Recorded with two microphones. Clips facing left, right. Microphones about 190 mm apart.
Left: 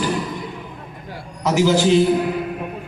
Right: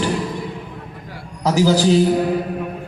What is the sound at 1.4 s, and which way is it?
Speech, 35° right (ahead or behind).